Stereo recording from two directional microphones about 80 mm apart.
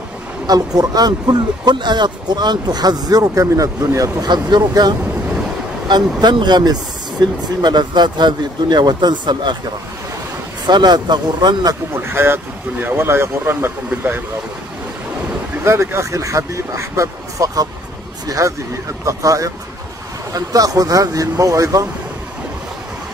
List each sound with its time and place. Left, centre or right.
0.5 s speech: right
4.3 s speech: right
10.7 s speech: right
11.9 s speech: right
15.6 s speech: right